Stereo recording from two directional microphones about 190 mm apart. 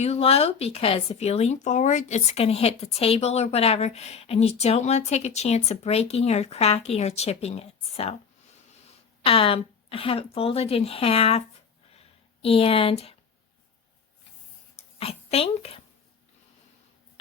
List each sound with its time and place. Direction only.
0.0 s speech: 30° left (ahead or behind)
9.2 s speech: 30° left (ahead or behind)
11.9 s a sound: 30° left (ahead or behind)
14.8 s speech: 30° left (ahead or behind)